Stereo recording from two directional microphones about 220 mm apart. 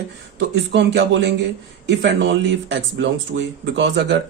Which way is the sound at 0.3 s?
50° right (ahead or behind).